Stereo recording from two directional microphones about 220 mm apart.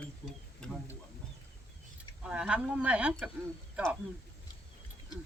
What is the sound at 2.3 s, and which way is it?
Speech, 5° right (ahead or behind).